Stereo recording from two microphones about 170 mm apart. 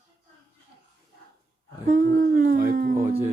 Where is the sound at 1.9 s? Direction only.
55° right (ahead or behind).